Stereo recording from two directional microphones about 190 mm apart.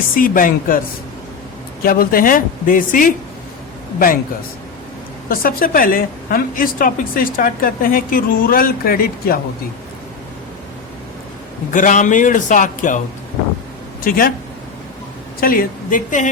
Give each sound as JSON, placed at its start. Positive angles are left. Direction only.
{"t": 0.1, "sound": "a woman's voice", "side_deg": 45}
{"t": 1.8, "sound": "a woman's voice", "side_deg": 50}
{"t": 5.3, "sound": "a woman's voice", "side_deg": 50}
{"t": 11.7, "sound": "a woman's voice", "side_deg": 40}
{"t": 14.0, "sound": "a woman's voice", "side_deg": 50}
{"t": 15.4, "sound": "a woman's voice", "side_deg": 50}